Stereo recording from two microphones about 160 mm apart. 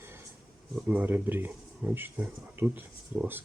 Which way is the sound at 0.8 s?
10° right (ahead or behind).